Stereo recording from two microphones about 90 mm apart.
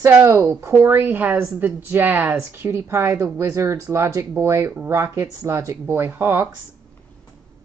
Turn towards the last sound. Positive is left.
turn(degrees=-25)  # may be behind; listen again after turning